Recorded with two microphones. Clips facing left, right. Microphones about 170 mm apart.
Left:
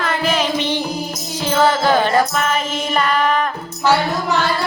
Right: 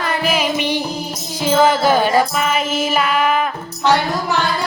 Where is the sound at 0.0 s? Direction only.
10° right (ahead or behind).